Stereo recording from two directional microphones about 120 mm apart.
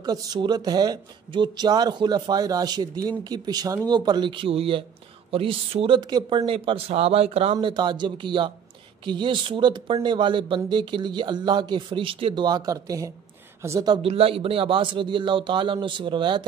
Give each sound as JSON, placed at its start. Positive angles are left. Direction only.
{"t": 0.0, "sound": "a man's voice", "side_deg": -35}
{"t": 5.9, "sound": "speech", "side_deg": -35}
{"t": 6.4, "sound": "speech", "side_deg": -50}
{"t": 7.5, "sound": "speech", "side_deg": -40}
{"t": 14.0, "sound": "a man's voice", "side_deg": -55}